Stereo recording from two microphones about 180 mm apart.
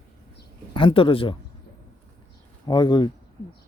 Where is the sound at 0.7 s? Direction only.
25° left (ahead or behind).